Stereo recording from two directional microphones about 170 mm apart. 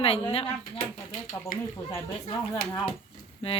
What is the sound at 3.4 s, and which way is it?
Speech, 35° left (ahead or behind).